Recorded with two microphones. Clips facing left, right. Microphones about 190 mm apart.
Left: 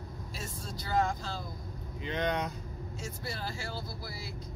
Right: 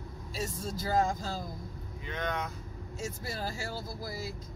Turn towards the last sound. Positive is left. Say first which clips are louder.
# right 4 dB
turn(degrees=-45)  # may be behind; listen again after turning